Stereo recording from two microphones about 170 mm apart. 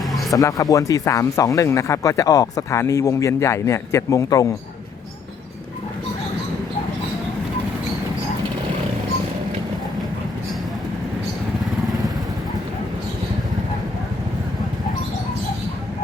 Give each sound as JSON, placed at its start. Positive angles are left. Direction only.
{"t": 0.3, "sound": "speech", "side_deg": 20}